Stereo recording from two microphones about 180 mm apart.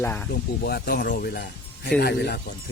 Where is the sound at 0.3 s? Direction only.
60° left (ahead or behind).